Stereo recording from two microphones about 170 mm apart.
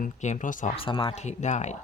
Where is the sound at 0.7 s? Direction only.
30° left (ahead or behind).